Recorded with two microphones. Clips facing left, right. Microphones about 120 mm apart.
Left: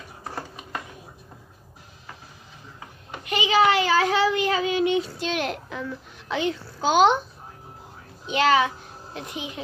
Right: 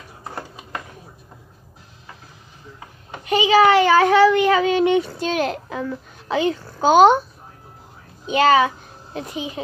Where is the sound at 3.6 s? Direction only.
55° right (ahead or behind).